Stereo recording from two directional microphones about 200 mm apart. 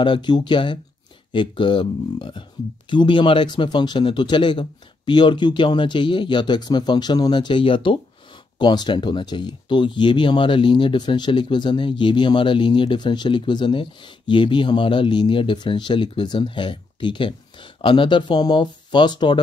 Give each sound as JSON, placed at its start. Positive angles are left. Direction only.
{"t": 0.0, "sound": "speech", "side_deg": 20}